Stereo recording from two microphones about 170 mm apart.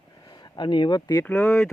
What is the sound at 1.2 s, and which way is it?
Speech, 10° left (ahead or behind).